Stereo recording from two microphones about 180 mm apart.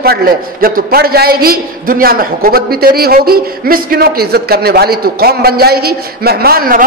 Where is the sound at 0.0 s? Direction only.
55° right (ahead or behind).